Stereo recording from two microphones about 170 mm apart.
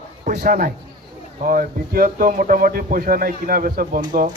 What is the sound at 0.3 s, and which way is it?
A man's voice, 55° right (ahead or behind).